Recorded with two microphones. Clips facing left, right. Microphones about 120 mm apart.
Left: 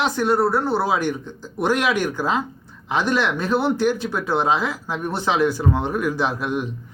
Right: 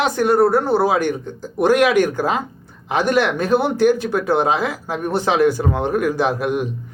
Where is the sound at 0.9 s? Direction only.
55° right (ahead or behind).